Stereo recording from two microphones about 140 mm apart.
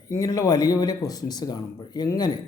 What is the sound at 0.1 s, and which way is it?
Speech, 25° left (ahead or behind).